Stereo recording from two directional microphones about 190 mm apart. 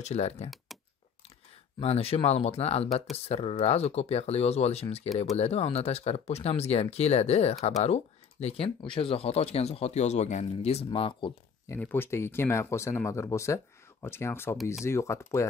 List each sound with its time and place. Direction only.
0.0 s speech: 35° left (ahead or behind)
0.7 s computer keyboard: centre (ahead or behind)
1.8 s speech: 30° left (ahead or behind)
11.6 s speech: 10° left (ahead or behind)